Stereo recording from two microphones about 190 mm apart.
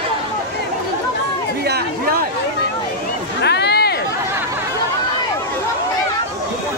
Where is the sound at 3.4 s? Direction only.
60° left (ahead or behind).